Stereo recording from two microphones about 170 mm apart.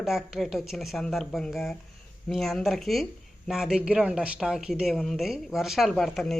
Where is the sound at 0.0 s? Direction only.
Centre (ahead or behind).